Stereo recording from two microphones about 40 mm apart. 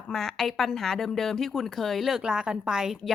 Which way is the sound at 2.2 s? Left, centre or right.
Right.